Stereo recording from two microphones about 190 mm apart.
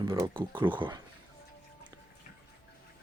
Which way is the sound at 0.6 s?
15° right (ahead or behind).